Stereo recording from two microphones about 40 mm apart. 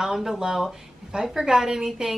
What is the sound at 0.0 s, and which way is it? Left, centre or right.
A woman's voice, centre.